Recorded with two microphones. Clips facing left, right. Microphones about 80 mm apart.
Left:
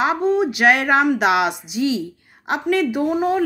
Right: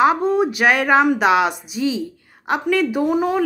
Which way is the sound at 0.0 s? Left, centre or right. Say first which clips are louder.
Right 2 dB; right.